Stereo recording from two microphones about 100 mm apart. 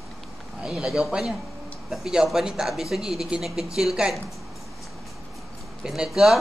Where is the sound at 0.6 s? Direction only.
5° right (ahead or behind).